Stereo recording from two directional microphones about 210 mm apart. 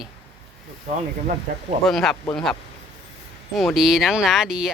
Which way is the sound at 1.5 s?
40° right (ahead or behind).